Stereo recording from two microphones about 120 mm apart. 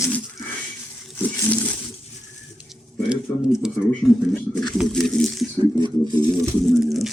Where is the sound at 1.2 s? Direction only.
15° left (ahead or behind).